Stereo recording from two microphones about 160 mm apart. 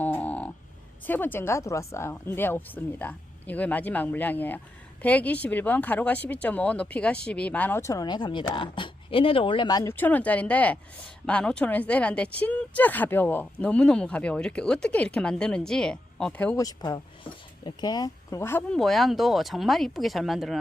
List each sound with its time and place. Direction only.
0.0 s a sound: 10° left (ahead or behind)
1.0 s speech: 10° left (ahead or behind)
9.9 s speech: 10° left (ahead or behind)
16.6 s speech: 25° left (ahead or behind)
18.7 s speech: centre (ahead or behind)